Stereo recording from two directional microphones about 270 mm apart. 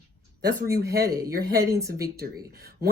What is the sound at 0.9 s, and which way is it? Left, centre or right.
Speech, right.